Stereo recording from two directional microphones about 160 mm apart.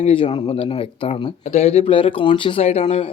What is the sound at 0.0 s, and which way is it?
Speech, 35° left (ahead or behind).